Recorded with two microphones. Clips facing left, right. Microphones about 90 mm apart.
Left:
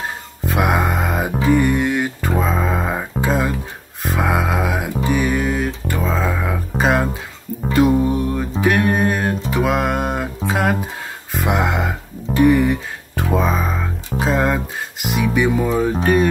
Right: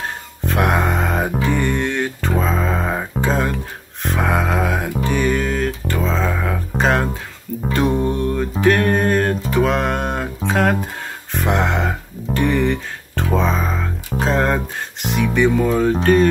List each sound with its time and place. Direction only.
0.4 s music: centre (ahead or behind)